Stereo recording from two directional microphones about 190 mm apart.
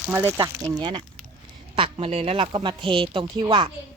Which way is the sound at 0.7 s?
25° right (ahead or behind).